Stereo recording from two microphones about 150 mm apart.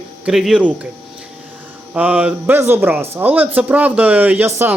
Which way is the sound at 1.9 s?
10° right (ahead or behind).